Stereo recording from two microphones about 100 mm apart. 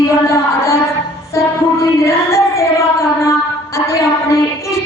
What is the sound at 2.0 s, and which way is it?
Music, 30° left (ahead or behind).